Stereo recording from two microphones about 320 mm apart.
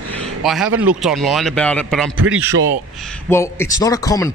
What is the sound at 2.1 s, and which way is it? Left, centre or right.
Speech, right.